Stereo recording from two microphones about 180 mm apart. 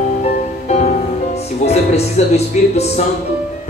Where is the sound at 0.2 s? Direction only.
40° left (ahead or behind).